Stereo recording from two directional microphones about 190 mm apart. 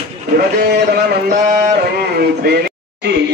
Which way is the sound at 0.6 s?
55° right (ahead or behind).